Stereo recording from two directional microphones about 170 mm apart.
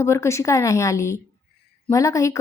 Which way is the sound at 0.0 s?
15° left (ahead or behind).